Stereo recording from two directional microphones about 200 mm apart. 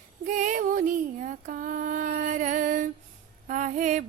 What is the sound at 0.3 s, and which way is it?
Female singing, 40° right (ahead or behind).